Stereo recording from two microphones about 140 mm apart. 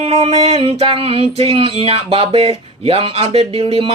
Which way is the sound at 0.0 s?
50° right (ahead or behind).